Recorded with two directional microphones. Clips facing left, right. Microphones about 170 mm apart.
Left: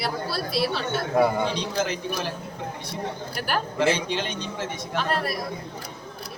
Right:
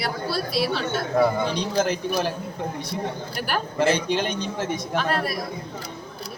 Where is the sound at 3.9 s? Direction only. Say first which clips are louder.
Right 3 dB; 45° right (ahead or behind).